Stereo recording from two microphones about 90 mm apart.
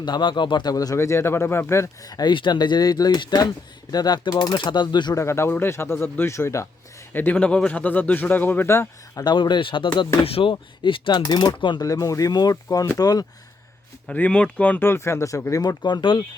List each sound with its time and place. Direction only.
0.0 s speech: 55° left (ahead or behind)
0.9 s a man's voice: 30° left (ahead or behind)
2.0 s speech: 45° left (ahead or behind)
2.3 s speech: 60° left (ahead or behind)
5.1 s a man's voice: 30° left (ahead or behind)
7.1 s a man's voice: 20° left (ahead or behind)
9.2 s speech: 60° left (ahead or behind)
10.2 s speech: 90° left
10.5 s speech: 70° left (ahead or behind)
11.8 s speech: 40° left (ahead or behind)
12.6 s speech: 35° left (ahead or behind)
14.1 s a man's voice: 10° left (ahead or behind); by 15.4 s 30° left (ahead or behind)
15.6 s speech: 55° left (ahead or behind)